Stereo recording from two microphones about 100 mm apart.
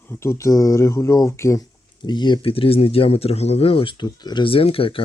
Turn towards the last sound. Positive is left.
turn(degrees=65)  # may be behind; listen again after turning